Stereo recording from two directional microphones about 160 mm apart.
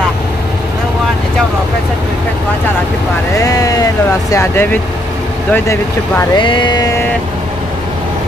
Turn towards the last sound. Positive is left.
turn(degrees=25)  # may be behind; listen again after turning